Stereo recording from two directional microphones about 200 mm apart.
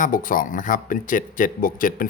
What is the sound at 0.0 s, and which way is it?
Speech, 45° left (ahead or behind).